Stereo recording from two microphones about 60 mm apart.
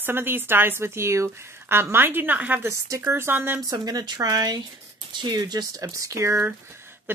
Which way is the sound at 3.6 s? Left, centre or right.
Right.